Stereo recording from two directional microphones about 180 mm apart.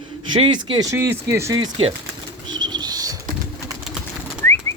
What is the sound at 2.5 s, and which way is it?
Bird, 25° right (ahead or behind).